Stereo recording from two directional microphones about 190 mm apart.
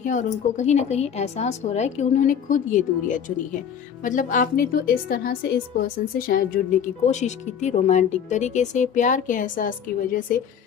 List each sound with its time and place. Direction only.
0.0 s a woman's voice: 40° left (ahead or behind)